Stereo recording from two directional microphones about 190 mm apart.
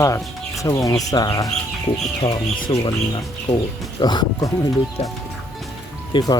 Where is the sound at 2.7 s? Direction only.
25° left (ahead or behind).